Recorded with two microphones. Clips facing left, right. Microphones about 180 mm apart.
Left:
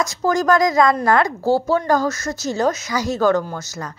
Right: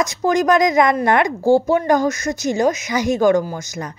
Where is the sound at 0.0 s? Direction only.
20° right (ahead or behind).